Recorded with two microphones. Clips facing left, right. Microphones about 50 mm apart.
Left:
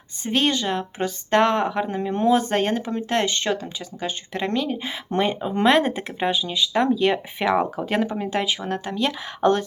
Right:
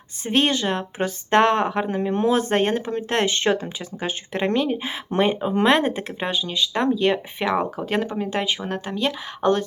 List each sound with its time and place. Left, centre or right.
0.3 s speech: centre
1.9 s speech: centre